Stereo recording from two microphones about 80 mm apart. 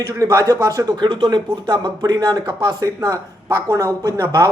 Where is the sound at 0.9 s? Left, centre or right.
Right.